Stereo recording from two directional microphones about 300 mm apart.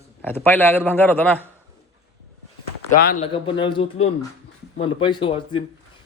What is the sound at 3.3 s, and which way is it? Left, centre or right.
A man's voice, centre.